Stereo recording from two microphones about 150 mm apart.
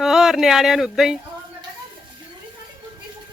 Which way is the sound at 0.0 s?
Centre (ahead or behind).